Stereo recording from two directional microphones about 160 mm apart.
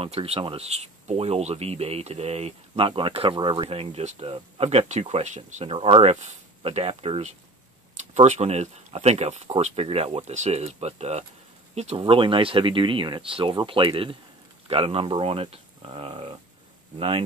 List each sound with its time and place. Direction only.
0.0 s speech: 40° right (ahead or behind)